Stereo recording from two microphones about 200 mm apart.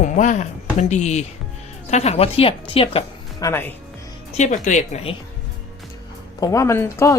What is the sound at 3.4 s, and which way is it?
Speech, 10° left (ahead or behind).